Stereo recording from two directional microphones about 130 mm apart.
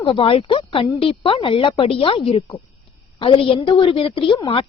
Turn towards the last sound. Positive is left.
turn(degrees=40)  # may be behind; listen again after turning